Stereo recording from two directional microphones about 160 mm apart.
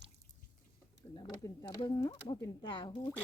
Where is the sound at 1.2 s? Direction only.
25° left (ahead or behind).